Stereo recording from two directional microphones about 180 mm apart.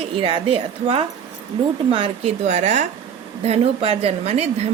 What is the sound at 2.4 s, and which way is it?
Speech, 40° right (ahead or behind).